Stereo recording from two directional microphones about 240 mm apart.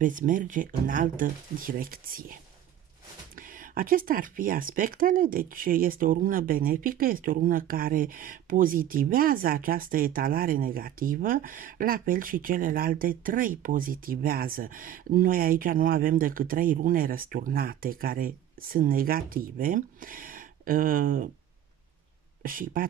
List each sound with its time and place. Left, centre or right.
0.0 s speech: right
3.3 s speech: right
22.4 s speech: right